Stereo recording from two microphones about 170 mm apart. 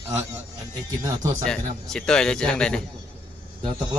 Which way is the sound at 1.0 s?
20° right (ahead or behind).